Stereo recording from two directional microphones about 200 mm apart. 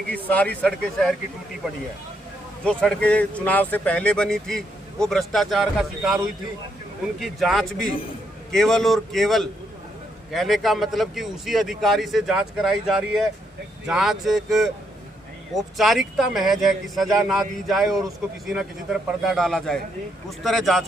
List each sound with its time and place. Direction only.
0.3 s speech: 5° left (ahead or behind)
2.6 s speech: 5° left (ahead or behind)
7.2 s speech: centre (ahead or behind)